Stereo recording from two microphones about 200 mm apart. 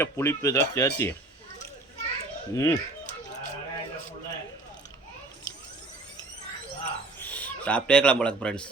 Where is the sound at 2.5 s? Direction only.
15° left (ahead or behind).